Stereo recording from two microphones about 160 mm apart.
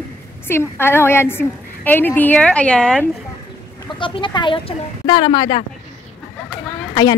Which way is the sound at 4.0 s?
30° left (ahead or behind).